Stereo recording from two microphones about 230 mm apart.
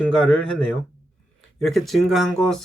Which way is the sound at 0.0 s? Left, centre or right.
Centre.